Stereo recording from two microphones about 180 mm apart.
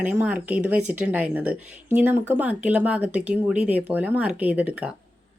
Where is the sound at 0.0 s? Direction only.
10° right (ahead or behind).